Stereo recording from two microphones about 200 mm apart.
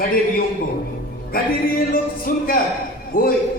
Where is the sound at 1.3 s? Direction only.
45° left (ahead or behind).